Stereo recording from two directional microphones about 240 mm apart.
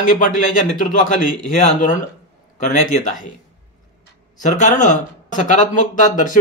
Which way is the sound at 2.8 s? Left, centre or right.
Left.